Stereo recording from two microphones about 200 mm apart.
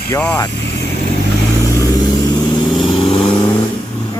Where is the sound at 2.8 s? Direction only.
30° left (ahead or behind).